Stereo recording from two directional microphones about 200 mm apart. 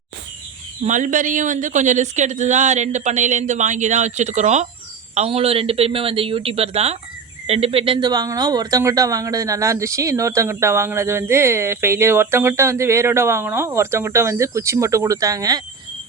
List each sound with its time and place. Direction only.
0.8 s speech: 40° right (ahead or behind); by 15.6 s 20° right (ahead or behind)